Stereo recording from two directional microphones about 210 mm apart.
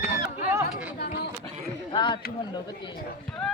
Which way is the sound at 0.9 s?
50° left (ahead or behind).